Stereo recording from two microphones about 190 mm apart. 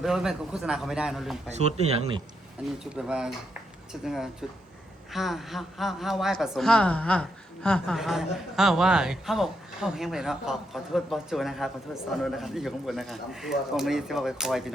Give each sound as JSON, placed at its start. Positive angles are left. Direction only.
{"t": 0.0, "sound": "speech", "side_deg": -5}
{"t": 1.5, "sound": "speech", "side_deg": -35}
{"t": 2.9, "sound": "speech", "side_deg": -5}